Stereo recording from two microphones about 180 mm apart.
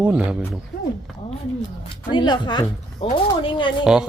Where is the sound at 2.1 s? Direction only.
25° left (ahead or behind).